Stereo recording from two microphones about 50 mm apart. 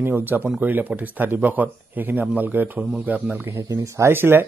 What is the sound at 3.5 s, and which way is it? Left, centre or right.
Speech, right.